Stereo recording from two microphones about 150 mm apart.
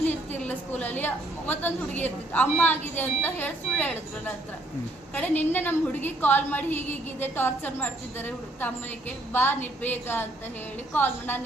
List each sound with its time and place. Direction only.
0.0 s a woman's voice: 10° left (ahead or behind)
5.1 s a woman's voice: 10° left (ahead or behind)